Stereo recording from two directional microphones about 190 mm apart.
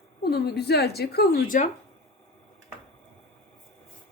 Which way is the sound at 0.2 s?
60° left (ahead or behind).